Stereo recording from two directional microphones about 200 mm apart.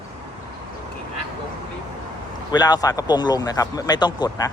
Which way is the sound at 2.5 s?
20° left (ahead or behind).